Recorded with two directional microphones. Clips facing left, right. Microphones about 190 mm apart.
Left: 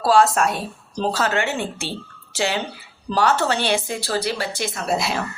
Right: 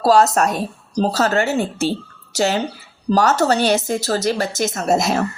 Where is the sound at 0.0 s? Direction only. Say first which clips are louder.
Right 3 dB; 40° right (ahead or behind).